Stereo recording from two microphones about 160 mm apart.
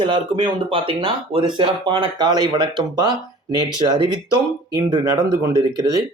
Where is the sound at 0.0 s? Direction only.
30° right (ahead or behind).